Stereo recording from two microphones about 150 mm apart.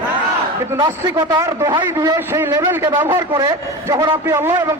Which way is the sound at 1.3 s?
25° right (ahead or behind).